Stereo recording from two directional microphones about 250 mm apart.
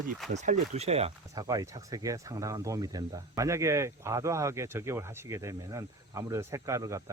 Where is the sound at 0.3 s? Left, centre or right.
Right.